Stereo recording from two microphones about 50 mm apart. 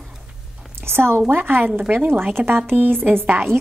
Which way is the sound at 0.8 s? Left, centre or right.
Right.